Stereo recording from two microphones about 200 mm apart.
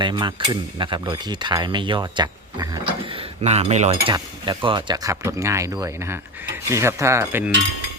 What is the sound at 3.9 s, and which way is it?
Speech, 20° right (ahead or behind).